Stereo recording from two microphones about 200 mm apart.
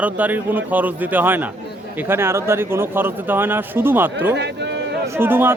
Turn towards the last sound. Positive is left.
turn(degrees=-10)  # may be behind; listen again after turning